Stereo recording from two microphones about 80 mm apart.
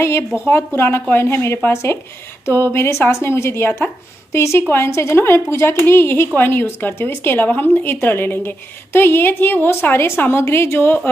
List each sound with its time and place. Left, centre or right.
0.6 s a woman's voice: left